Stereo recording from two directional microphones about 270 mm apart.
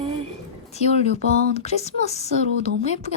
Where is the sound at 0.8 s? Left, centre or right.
Left.